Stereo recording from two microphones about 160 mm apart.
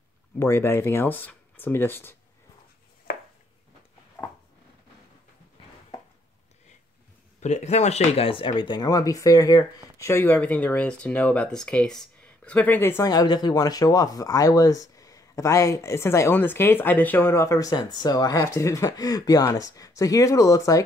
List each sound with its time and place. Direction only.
0.4 s speech: 15° left (ahead or behind)
7.3 s speech: 45° left (ahead or behind); by 20.8 s 20° left (ahead or behind)